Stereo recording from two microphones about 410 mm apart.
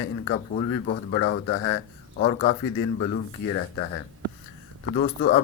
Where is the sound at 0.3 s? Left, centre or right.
Left.